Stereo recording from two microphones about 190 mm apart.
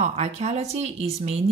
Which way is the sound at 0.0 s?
35° right (ahead or behind).